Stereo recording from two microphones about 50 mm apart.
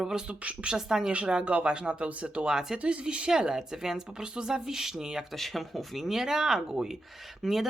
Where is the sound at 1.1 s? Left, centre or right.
Right.